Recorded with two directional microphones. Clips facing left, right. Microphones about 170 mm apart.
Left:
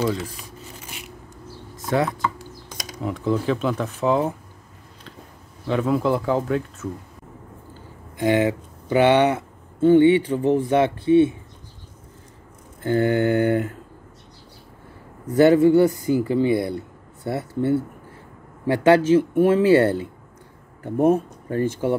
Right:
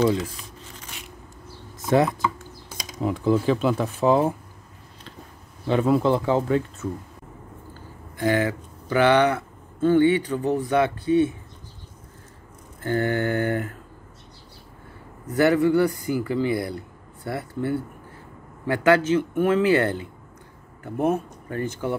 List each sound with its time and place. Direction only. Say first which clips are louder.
2.7 s speech: right 2 dB; 10° right (ahead or behind)
5.7 s speech: right 1 dB; centre (ahead or behind)
8.2 s speech: left 3 dB; 20° left (ahead or behind)
12.8 s speech: left 4 dB; 20° left (ahead or behind)
15.2 s speech: left 5 dB; 25° left (ahead or behind)